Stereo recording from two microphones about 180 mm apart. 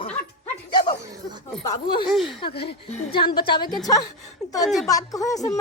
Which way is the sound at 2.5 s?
65° left (ahead or behind).